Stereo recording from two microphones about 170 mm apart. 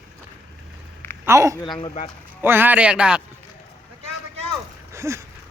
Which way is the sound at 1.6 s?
25° left (ahead or behind).